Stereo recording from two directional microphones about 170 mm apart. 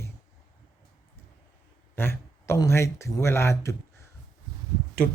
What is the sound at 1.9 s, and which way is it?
A man's voice, 15° left (ahead or behind).